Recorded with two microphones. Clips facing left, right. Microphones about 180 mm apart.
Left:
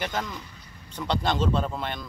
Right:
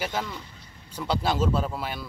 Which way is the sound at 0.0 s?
5° right (ahead or behind).